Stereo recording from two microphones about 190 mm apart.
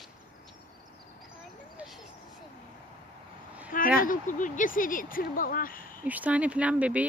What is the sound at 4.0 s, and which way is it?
Speech, 45° left (ahead or behind).